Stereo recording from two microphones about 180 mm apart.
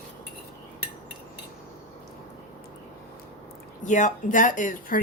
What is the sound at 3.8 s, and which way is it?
Speech, 45° left (ahead or behind).